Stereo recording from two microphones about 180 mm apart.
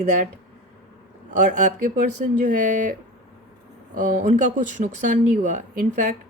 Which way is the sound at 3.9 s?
45° right (ahead or behind).